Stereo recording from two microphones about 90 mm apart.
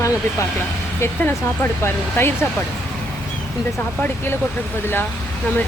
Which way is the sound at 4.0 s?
25° left (ahead or behind).